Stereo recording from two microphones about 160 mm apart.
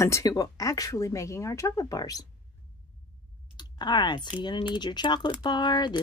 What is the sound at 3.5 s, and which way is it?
Speech, 25° left (ahead or behind).